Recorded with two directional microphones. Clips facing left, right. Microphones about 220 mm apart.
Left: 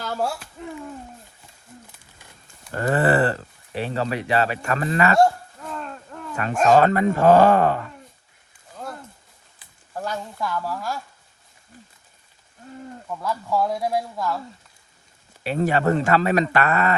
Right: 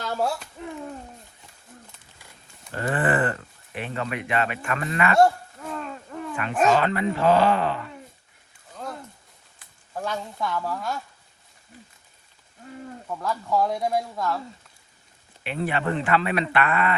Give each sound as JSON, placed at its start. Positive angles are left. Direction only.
{"t": 2.7, "sound": "speech", "side_deg": 40}
{"t": 5.6, "sound": "a sound", "side_deg": -5}
{"t": 6.3, "sound": "speech", "side_deg": 40}
{"t": 9.9, "sound": "speech", "side_deg": 0}
{"t": 13.1, "sound": "speech", "side_deg": 5}
{"t": 15.4, "sound": "speech", "side_deg": 40}